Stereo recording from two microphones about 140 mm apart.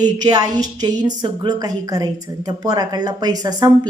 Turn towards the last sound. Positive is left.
turn(degrees=-25)  # may be behind; listen again after turning